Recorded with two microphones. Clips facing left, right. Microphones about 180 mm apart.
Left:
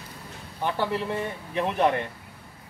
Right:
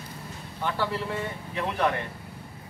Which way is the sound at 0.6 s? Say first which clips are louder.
Left 2 dB; 20° left (ahead or behind).